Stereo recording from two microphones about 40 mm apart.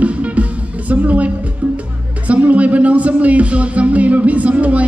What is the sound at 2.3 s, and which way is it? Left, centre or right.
Speech, right.